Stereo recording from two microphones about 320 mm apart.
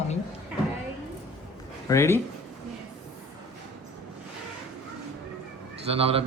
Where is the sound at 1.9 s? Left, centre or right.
Centre.